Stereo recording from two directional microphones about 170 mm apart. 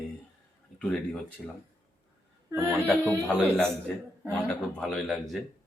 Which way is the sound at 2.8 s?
5° left (ahead or behind).